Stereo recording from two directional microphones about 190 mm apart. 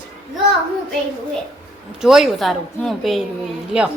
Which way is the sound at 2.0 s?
Centre (ahead or behind).